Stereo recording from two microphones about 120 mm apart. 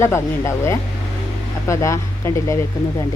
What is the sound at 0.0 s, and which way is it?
Speech, 25° left (ahead or behind).